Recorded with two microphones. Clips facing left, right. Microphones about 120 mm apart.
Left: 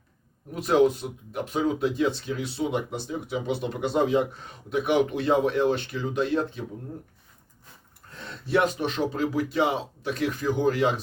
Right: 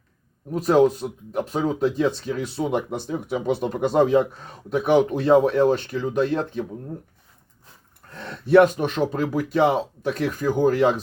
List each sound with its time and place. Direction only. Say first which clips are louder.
0.5 s speech: right 3 dB; 40° right (ahead or behind)
8.1 s speech: right 9 dB; 50° right (ahead or behind)